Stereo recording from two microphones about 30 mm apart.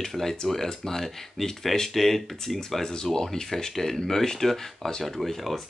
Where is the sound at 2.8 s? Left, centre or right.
Left.